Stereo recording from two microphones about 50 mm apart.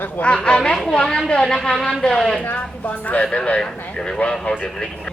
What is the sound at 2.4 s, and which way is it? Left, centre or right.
A woman's voice, left.